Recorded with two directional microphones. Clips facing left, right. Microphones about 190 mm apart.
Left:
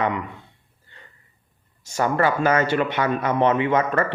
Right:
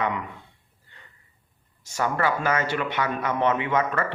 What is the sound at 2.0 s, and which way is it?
Speech, 30° left (ahead or behind).